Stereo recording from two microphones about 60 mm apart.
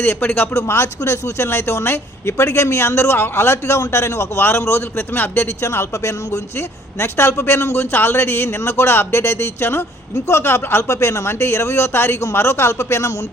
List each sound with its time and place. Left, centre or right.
0.0 s a man's voice: left
0.5 s speech: left
4.4 s a man's voice: left
5.6 s speech: left
7.0 s speech: left